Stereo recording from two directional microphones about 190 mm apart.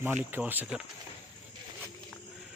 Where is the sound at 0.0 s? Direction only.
10° right (ahead or behind).